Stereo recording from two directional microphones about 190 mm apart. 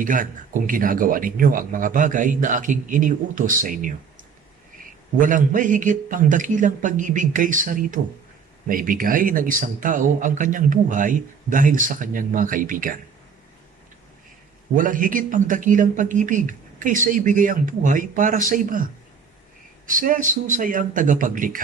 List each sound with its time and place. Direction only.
0.0 s speech: 45° right (ahead or behind)
5.1 s speech: 45° right (ahead or behind)
14.8 s speech: 45° right (ahead or behind)
19.9 s speech: 45° right (ahead or behind)